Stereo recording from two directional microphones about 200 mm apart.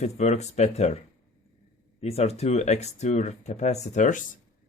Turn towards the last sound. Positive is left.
turn(degrees=40)  # may be behind; listen again after turning